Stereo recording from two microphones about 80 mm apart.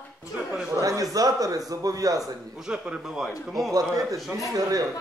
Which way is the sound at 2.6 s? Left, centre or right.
Centre.